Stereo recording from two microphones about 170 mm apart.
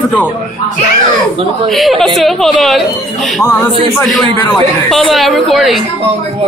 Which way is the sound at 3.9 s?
Centre (ahead or behind).